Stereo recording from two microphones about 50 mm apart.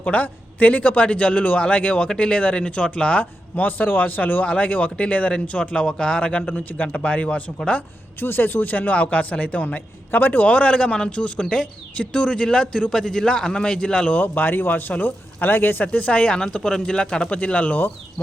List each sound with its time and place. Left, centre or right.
0.0 s speech: left
3.5 s a man's voice: left
8.2 s a man's voice: left
10.4 s speech: left
14.2 s a man's voice: left
15.9 s speech: left